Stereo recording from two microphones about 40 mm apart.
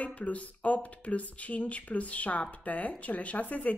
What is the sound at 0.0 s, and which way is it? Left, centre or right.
A woman's voice, left.